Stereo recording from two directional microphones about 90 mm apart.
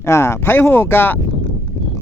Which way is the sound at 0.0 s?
30° left (ahead or behind).